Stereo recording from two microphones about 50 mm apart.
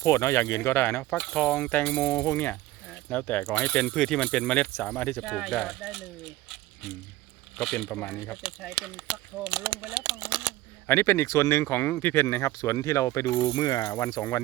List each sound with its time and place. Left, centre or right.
0.0 s speech: left
1.1 s speech: centre
1.4 s speech: left
2.1 s speech: left
3.4 s speech: left
5.2 s speech: centre
5.6 s speech: centre
7.5 s speech: centre
8.4 s speech: right
10.2 s speech: right
10.8 s speech: left
12.4 s speech: left